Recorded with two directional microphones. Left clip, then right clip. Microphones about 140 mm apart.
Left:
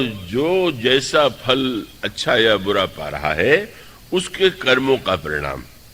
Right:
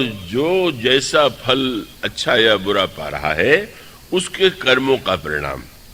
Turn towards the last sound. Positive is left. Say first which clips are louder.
# right 1 dB
turn(degrees=-40)  # may be behind; listen again after turning